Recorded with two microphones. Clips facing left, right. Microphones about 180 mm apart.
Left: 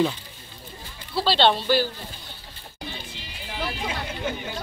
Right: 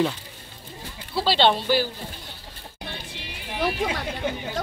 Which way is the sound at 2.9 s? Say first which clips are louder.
Right 1 dB; 70° right (ahead or behind).